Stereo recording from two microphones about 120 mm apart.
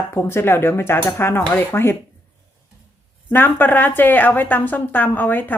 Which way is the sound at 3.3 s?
15° left (ahead or behind).